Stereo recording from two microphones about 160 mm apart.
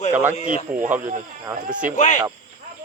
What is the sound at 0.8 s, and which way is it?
Speech, 10° right (ahead or behind).